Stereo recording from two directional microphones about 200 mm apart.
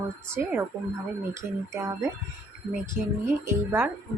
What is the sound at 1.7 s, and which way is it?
Speech, 15° right (ahead or behind).